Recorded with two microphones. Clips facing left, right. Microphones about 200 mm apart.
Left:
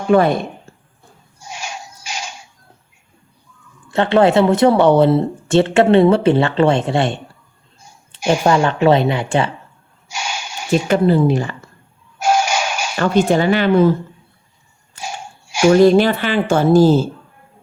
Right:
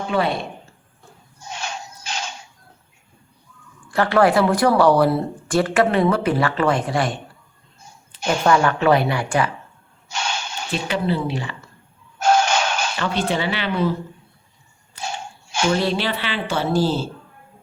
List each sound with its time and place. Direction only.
0.1 s a woman's voice: 50° left (ahead or behind)
1.4 s a sound: 10° left (ahead or behind)
3.9 s speech: 25° left (ahead or behind)
8.2 s speech: 10° left (ahead or behind)
8.4 s speech: 25° left (ahead or behind)
10.1 s a sound: 10° left (ahead or behind)
10.8 s a woman's voice: 45° left (ahead or behind)
12.2 s music: 10° left (ahead or behind)
13.0 s a woman's voice: 45° left (ahead or behind)
14.9 s a sound: 10° left (ahead or behind)
15.7 s a woman's voice: 45° left (ahead or behind)